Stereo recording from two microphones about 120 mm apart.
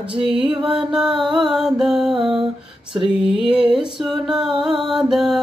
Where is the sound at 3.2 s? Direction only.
5° right (ahead or behind).